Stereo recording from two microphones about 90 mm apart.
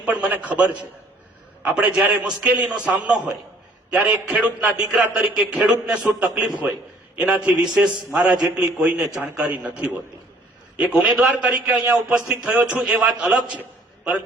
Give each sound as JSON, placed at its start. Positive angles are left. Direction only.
{"t": 0.0, "sound": "a man's voice", "side_deg": -15}